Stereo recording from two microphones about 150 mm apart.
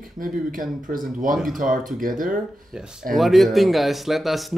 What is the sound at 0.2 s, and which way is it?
Speech, 65° right (ahead or behind).